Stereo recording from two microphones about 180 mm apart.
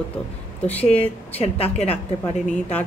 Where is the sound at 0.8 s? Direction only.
35° left (ahead or behind).